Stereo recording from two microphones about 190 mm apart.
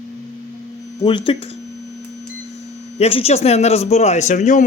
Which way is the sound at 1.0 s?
25° left (ahead or behind).